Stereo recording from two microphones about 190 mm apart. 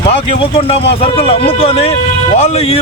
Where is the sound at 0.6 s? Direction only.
30° left (ahead or behind).